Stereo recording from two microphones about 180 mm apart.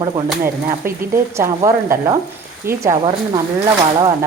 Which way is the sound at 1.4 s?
15° right (ahead or behind).